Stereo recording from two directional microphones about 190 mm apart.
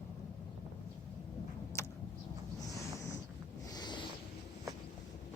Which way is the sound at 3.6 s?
20° left (ahead or behind).